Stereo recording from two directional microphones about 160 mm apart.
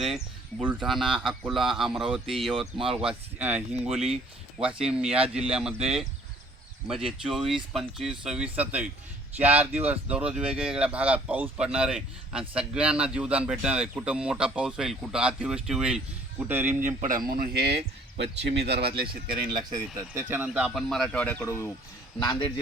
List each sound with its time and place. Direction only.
0.6 s speech: 5° right (ahead or behind)
2.5 s speech: 35° right (ahead or behind)
3.0 s speech: 5° right (ahead or behind)
16.8 s speech: 55° right (ahead or behind); by 19.0 s 85° right
19.5 s speech: 25° right (ahead or behind)
20.2 s speech: 10° right (ahead or behind); by 21.7 s 15° left (ahead or behind)
22.2 s speech: 30° left (ahead or behind)